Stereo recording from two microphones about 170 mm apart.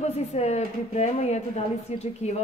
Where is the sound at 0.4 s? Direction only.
40° left (ahead or behind).